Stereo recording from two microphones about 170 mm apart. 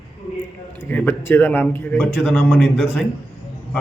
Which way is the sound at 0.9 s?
10° left (ahead or behind).